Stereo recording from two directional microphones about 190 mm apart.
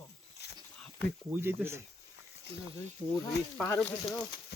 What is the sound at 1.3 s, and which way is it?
Speech, 10° right (ahead or behind).